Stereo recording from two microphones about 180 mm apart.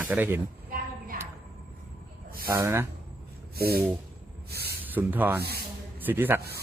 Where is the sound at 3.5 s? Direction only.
60° right (ahead or behind).